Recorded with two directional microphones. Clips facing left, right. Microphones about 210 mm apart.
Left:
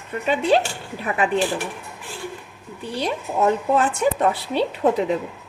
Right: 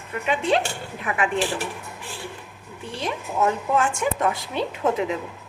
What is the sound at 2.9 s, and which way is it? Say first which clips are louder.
A woman's voice: left 4 dB; 35° left (ahead or behind).